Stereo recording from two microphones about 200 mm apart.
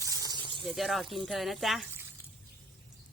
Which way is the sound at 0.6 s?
Centre (ahead or behind).